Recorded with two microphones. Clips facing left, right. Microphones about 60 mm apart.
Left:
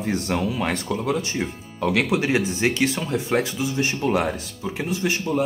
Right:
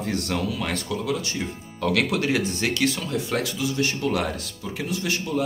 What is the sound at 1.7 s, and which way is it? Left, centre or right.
Speech, centre.